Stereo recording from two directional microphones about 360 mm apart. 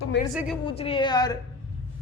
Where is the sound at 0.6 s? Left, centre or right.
Centre.